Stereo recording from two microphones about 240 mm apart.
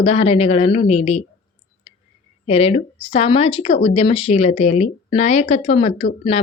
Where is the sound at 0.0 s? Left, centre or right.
Left.